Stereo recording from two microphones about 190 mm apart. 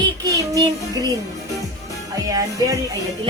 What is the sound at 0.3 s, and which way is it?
Child singing, 20° right (ahead or behind).